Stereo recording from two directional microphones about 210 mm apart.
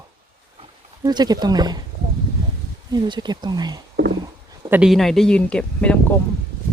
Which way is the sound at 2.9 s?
20° right (ahead or behind).